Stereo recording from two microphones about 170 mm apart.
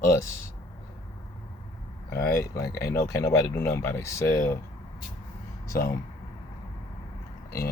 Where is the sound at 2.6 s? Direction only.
65° left (ahead or behind).